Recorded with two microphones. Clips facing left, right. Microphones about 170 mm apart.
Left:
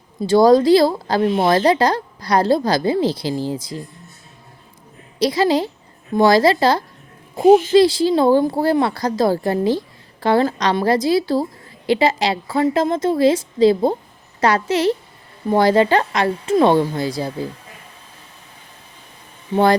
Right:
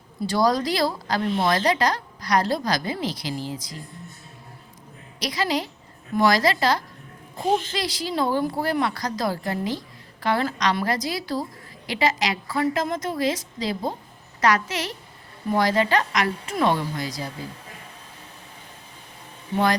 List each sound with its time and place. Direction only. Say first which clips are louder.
0.3 s speech: left 11 dB; 25° left (ahead or behind)
5.2 s speech: left 9 dB; 30° left (ahead or behind)